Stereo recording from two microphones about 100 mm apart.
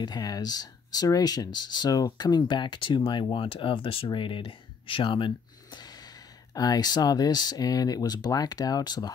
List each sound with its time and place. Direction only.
0.0 s speech: 45° left (ahead or behind)